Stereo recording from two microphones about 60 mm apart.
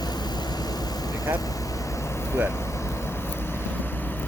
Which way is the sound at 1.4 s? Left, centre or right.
Left.